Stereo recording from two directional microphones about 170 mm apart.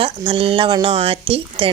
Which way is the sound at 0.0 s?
30° right (ahead or behind).